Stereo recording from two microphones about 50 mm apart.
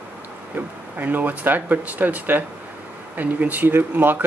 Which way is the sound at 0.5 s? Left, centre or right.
Right.